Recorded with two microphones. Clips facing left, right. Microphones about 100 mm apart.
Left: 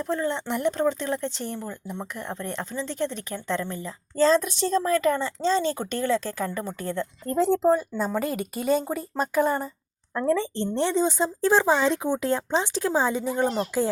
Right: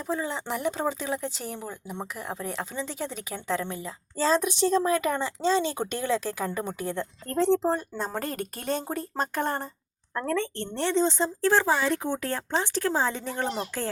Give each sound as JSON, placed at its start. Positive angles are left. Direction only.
{"t": 0.0, "sound": "speech", "side_deg": -5}
{"t": 7.3, "sound": "a woman's voice", "side_deg": 5}